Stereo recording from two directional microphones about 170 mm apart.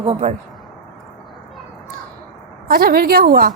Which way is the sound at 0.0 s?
35° right (ahead or behind).